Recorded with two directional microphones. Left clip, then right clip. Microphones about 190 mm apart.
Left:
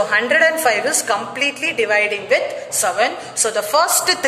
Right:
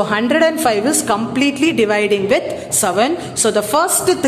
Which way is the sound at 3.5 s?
10° right (ahead or behind).